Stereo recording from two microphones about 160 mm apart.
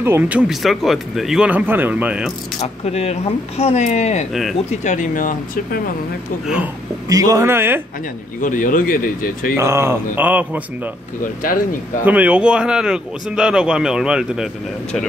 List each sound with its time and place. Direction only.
0.0 s speech: 10° right (ahead or behind)
2.6 s speech: 40° left (ahead or behind)
4.3 s a man's voice: centre (ahead or behind)
4.6 s speech: 50° left (ahead or behind)
6.4 s a man's voice: 5° right (ahead or behind)
7.1 s speech: 20° right (ahead or behind)
8.4 s speech: 55° left (ahead or behind)
9.6 s speech: 15° right (ahead or behind)
11.4 s speech: 60° left (ahead or behind)
12.0 s a man's voice: 10° right (ahead or behind)